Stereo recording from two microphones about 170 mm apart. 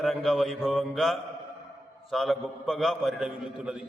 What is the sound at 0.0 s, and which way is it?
A man's voice, centre (ahead or behind).